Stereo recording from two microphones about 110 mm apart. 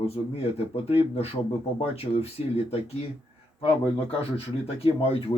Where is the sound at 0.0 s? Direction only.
65° left (ahead or behind).